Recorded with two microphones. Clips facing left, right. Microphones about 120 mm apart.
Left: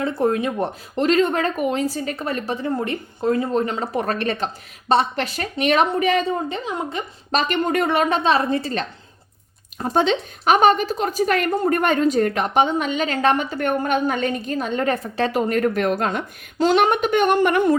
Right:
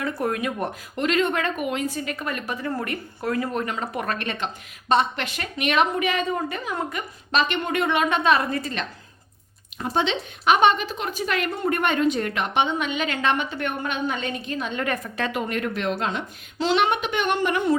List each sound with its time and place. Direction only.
0.0 s speech: 30° left (ahead or behind)
2.6 s speech: 20° left (ahead or behind)
7.3 s speech: 40° left (ahead or behind)